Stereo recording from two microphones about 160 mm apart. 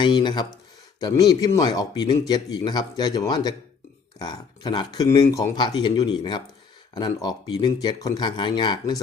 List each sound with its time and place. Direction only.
0.0 s speech: 30° left (ahead or behind)